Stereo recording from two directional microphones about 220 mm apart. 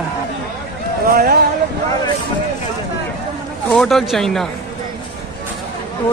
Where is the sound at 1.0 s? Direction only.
40° right (ahead or behind).